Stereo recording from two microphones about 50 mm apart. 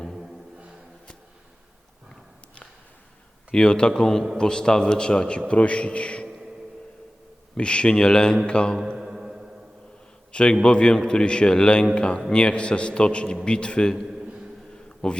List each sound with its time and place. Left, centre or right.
3.5 s a man's voice: centre
7.5 s a man's voice: centre
9.0 s music: centre
10.3 s a man's voice: centre
15.0 s a man's voice: centre